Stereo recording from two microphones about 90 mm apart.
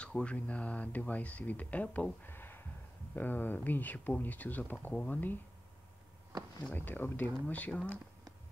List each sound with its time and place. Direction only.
0.0 s speech: 15° left (ahead or behind)
6.7 s speech: 20° left (ahead or behind)